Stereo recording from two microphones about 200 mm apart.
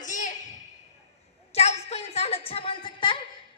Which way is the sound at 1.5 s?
30° left (ahead or behind).